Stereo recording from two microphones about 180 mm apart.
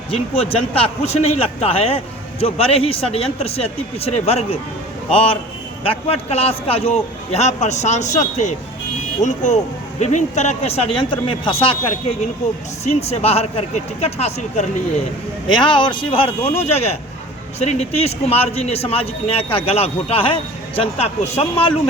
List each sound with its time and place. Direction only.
0.1 s a man's voice: 30° left (ahead or behind)
15.4 s a man's voice: 25° left (ahead or behind)